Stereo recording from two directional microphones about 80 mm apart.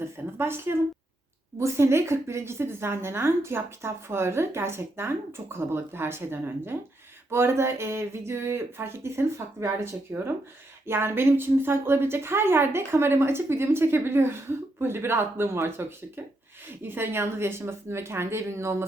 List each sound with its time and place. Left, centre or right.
0.0 s a woman's voice: right